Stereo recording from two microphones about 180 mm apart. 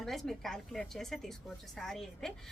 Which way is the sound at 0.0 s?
Centre (ahead or behind).